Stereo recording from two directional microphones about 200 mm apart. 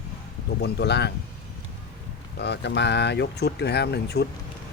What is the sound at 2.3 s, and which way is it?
Speech, 60° left (ahead or behind).